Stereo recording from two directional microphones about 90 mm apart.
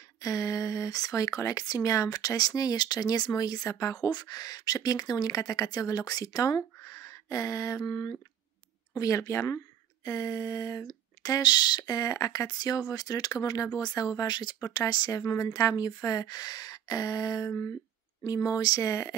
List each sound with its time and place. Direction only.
0.2 s speech: 35° left (ahead or behind)